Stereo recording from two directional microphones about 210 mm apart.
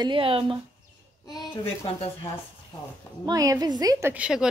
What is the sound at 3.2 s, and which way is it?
A woman's voice, 15° right (ahead or behind).